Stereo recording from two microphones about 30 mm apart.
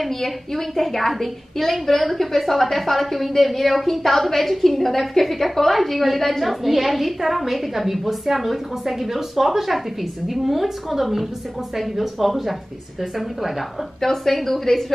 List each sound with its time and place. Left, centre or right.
0.0 s a woman's voice: centre
14.0 s a woman's voice: centre